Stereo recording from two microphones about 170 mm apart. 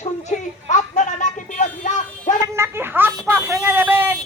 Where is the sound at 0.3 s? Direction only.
45° left (ahead or behind).